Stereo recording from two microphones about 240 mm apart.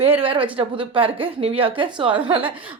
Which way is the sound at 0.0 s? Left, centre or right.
Right.